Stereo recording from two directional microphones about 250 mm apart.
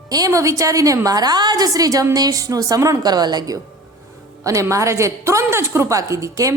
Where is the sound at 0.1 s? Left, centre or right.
Centre.